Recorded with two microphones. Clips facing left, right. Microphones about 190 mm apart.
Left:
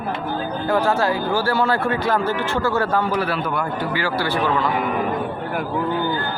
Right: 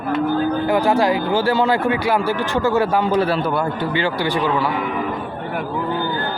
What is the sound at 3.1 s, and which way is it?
A man's voice, 30° right (ahead or behind).